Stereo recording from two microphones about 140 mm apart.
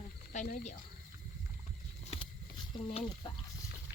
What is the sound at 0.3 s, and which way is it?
Speech, 85° left.